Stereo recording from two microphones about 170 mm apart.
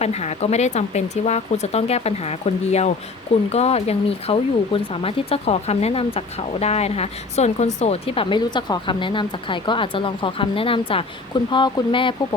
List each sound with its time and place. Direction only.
0.0 s speech: 40° left (ahead or behind)